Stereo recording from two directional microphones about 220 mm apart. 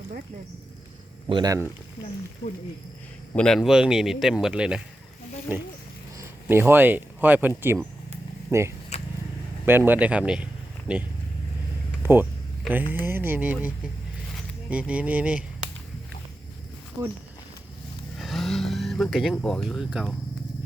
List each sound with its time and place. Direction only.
1.3 s speech: 15° right (ahead or behind)
3.3 s a man's voice: centre (ahead or behind)
6.1 s speech: 10° right (ahead or behind)
8.9 s vehicle: 30° left (ahead or behind)
9.6 s speech: 10° right (ahead or behind)
12.0 s a sound: 10° right (ahead or behind)
12.9 s speech: 10° right (ahead or behind)
17.0 s speech: 10° right (ahead or behind)
18.2 s vehicle: centre (ahead or behind)